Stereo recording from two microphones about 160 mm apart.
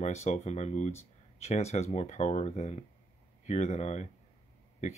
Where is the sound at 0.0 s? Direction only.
45° left (ahead or behind).